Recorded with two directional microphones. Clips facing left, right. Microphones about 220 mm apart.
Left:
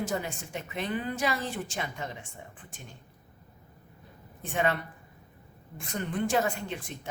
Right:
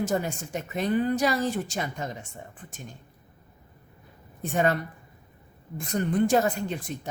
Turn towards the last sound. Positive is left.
turn(degrees=-40)  # may be behind; listen again after turning